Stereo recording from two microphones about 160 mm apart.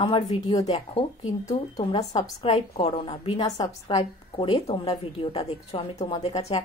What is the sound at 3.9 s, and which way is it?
A woman's voice, 40° left (ahead or behind).